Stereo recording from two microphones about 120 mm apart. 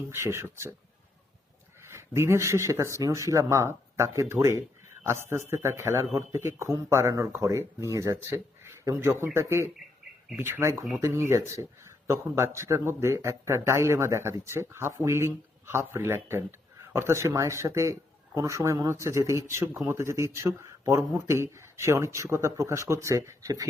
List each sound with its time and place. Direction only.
0.1 s speech: 25° right (ahead or behind)
1.9 s speech: 20° right (ahead or behind)